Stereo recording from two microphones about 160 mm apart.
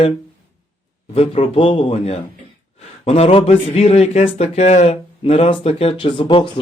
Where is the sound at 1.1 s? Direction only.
40° left (ahead or behind).